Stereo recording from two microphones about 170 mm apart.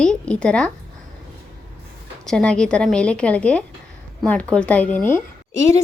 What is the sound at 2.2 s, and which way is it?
A woman's voice, 5° left (ahead or behind).